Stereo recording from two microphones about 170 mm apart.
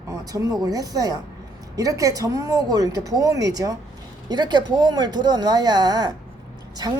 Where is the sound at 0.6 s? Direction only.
20° right (ahead or behind).